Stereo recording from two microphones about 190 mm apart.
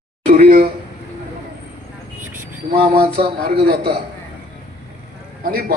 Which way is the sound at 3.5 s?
55° right (ahead or behind).